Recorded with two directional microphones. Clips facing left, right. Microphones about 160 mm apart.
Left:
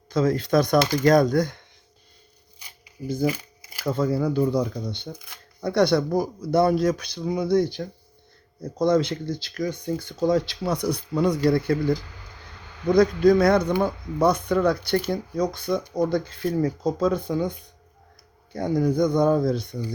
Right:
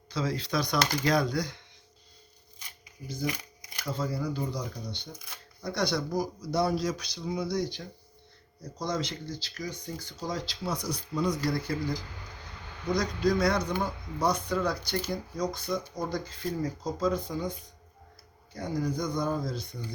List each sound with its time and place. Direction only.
0.1 s speech: 50° left (ahead or behind)
3.0 s speech: 35° left (ahead or behind)
3.3 s shuffling cards: 5° left (ahead or behind)
3.8 s speech: 55° left (ahead or behind)
18.5 s speech: 55° left (ahead or behind)